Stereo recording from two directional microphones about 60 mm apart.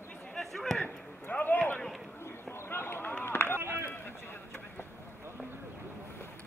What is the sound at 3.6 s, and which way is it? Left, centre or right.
Run, right.